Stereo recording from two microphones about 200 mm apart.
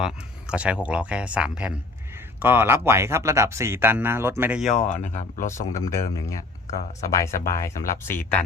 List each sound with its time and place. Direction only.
0.0 s speech: 5° right (ahead or behind)
4.9 s speech: 35° left (ahead or behind)
5.6 s speech: 15° left (ahead or behind)